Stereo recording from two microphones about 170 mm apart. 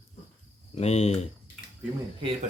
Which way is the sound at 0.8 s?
40° left (ahead or behind).